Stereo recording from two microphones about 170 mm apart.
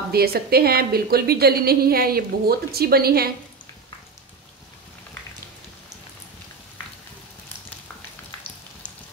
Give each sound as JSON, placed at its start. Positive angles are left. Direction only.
{"t": 0.1, "sound": "a woman's voice", "side_deg": -65}